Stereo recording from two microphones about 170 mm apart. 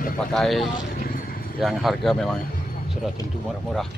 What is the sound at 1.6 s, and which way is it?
Speech, centre (ahead or behind).